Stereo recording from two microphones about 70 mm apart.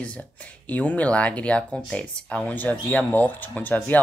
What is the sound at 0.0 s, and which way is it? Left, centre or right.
Speech, centre.